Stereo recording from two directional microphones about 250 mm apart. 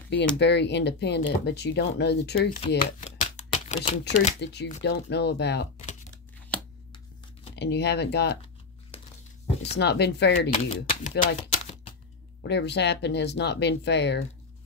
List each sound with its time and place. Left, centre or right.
0.4 s speech: left
3.0 s a sound: left
4.1 s speech: left
4.4 s speech: left
7.5 s speech: left
9.8 s speech: left
10.5 s speech: left
12.4 s speech: left